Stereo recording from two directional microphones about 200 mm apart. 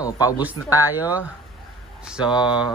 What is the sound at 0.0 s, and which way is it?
Speech, 15° left (ahead or behind).